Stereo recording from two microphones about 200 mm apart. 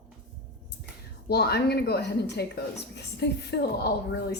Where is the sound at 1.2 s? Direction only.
55° left (ahead or behind).